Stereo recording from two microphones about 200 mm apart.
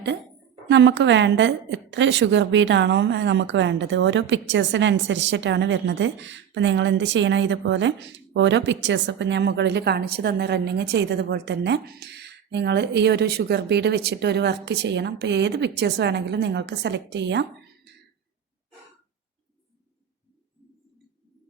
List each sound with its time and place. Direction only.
0.7 s a woman's voice: 65° right (ahead or behind)